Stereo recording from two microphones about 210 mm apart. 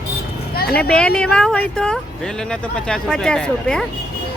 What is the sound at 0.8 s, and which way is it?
Speech, 5° left (ahead or behind).